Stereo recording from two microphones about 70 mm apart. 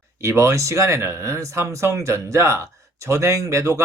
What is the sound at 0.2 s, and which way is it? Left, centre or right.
Speech, right.